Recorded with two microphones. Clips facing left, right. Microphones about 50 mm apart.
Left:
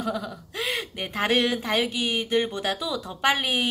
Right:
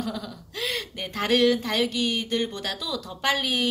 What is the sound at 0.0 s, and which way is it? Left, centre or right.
A woman's voice, centre.